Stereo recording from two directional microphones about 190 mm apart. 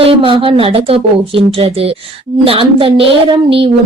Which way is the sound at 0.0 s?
30° right (ahead or behind).